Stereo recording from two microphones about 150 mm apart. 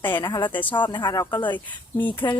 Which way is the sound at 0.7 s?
30° left (ahead or behind).